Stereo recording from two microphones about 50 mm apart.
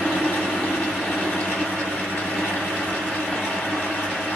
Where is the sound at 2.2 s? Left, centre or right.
Centre.